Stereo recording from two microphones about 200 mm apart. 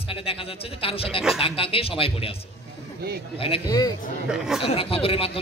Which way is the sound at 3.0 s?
50° right (ahead or behind).